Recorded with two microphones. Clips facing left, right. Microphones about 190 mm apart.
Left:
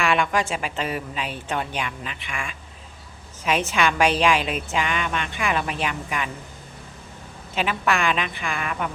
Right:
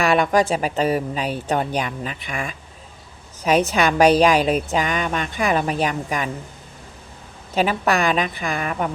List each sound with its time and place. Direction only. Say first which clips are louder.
0.0 s a woman's voice: right 5 dB; 40° right (ahead or behind)
7.5 s a woman's voice: right 4 dB; 40° right (ahead or behind)